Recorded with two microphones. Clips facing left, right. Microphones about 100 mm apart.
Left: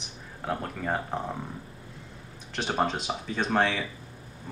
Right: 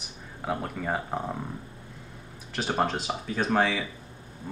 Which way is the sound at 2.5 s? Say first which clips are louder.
Right 1 dB; centre (ahead or behind).